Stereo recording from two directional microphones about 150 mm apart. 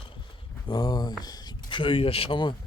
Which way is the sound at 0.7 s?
30° left (ahead or behind).